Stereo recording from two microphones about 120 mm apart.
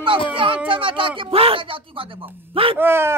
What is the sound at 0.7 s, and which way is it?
Speech, 45° right (ahead or behind).